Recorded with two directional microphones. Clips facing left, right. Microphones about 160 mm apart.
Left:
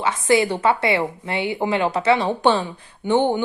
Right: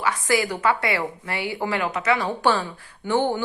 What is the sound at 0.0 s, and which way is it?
Speech, 25° left (ahead or behind).